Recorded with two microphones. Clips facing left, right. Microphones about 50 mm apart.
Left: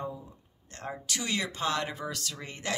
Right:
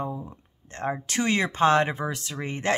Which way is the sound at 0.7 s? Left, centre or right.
Right.